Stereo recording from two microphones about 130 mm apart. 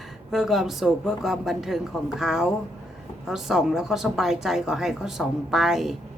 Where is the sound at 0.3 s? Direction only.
Centre (ahead or behind).